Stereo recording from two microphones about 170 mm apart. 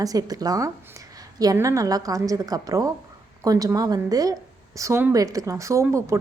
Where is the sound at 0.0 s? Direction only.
20° right (ahead or behind).